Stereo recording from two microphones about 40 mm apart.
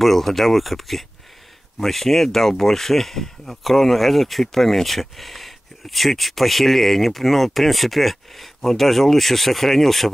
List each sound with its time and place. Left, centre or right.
0.0 s speech: centre